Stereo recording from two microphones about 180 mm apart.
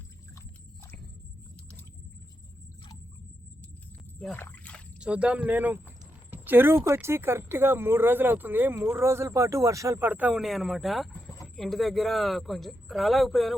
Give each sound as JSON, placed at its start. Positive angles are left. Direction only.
{"t": 4.2, "sound": "speech", "side_deg": 10}
{"t": 4.9, "sound": "speech", "side_deg": -5}